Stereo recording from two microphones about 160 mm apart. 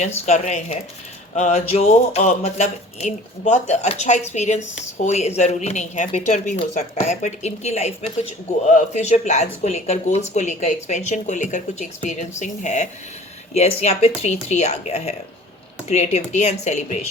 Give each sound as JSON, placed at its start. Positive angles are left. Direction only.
{"t": 0.3, "sound": "speech", "side_deg": 45}